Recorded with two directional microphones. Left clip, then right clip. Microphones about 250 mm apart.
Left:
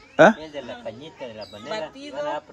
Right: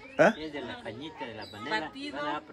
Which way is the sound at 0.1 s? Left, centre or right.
Left.